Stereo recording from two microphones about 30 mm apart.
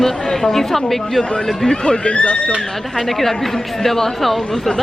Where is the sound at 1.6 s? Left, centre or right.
Left.